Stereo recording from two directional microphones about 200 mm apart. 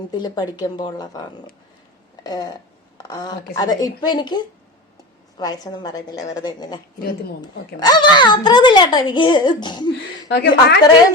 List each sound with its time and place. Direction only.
0.1 s a child's voice: 20° left (ahead or behind)
2.2 s a child's voice: 20° left (ahead or behind)
7.8 s a child's voice: 20° left (ahead or behind)
10.2 s a woman's voice: 60° left (ahead or behind)